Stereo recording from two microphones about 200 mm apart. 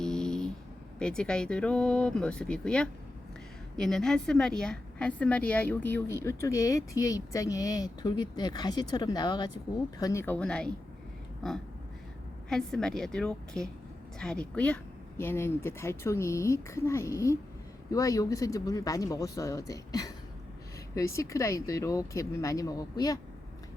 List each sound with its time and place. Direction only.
0.0 s a sound: 5° left (ahead or behind)
0.9 s a woman's voice: 5° left (ahead or behind)
12.5 s a woman's voice: centre (ahead or behind); by 23.1 s 20° left (ahead or behind)